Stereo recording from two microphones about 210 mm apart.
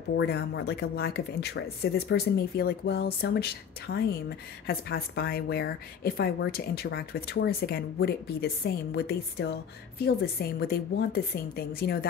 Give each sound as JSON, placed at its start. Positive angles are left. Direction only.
{"t": 0.3, "sound": "a woman's voice", "side_deg": 50}